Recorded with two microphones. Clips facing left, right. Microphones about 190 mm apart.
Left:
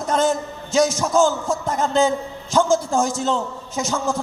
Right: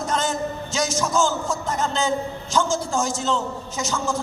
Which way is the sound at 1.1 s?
55° left (ahead or behind).